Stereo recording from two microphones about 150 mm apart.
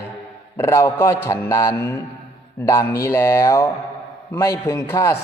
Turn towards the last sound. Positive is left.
turn(degrees=15)  # may be behind; listen again after turning